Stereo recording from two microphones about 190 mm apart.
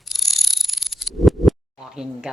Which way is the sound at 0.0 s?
Centre (ahead or behind).